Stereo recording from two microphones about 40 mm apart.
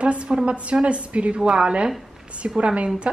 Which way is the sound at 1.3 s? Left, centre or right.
Right.